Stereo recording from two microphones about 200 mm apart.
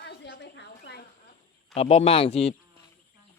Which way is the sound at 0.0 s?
60° left (ahead or behind).